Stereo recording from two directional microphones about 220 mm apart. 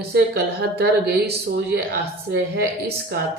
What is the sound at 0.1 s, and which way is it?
Speech, 50° right (ahead or behind).